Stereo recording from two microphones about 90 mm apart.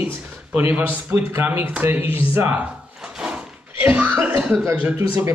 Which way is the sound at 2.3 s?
25° right (ahead or behind).